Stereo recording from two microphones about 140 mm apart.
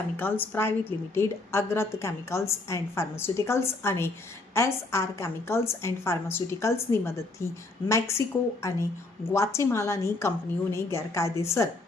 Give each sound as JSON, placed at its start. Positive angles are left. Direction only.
{"t": 0.2, "sound": "a woman's voice", "side_deg": 15}